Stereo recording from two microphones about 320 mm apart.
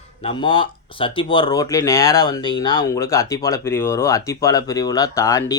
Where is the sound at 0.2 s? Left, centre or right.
Centre.